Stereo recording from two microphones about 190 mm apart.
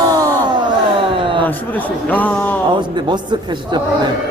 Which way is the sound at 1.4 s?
10° left (ahead or behind).